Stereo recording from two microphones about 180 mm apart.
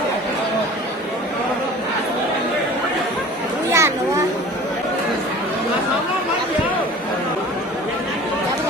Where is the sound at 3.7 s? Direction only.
15° right (ahead or behind).